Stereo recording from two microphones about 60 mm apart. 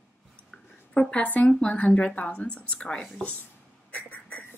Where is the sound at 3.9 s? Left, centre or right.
Left.